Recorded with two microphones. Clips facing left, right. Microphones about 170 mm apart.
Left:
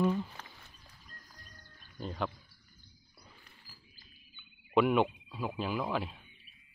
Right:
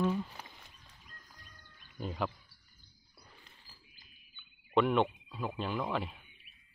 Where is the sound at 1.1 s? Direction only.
35° left (ahead or behind).